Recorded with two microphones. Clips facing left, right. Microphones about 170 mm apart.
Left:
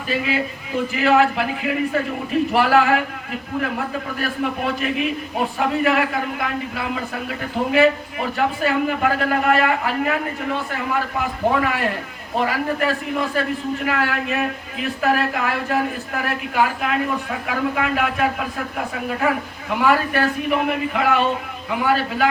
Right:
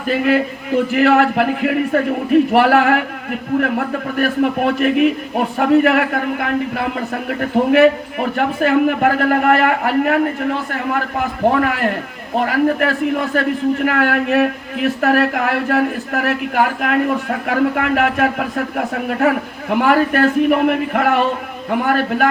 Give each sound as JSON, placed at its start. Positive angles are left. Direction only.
{"t": 0.1, "sound": "speech", "side_deg": -60}
{"t": 4.2, "sound": "speech", "side_deg": -60}
{"t": 11.6, "sound": "speech", "side_deg": -60}
{"t": 19.8, "sound": "speech", "side_deg": -55}